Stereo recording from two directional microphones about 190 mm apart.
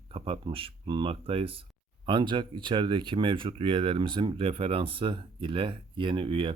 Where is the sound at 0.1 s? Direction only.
30° right (ahead or behind).